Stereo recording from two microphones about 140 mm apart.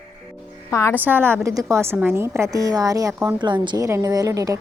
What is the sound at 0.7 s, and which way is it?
Speech, 20° left (ahead or behind).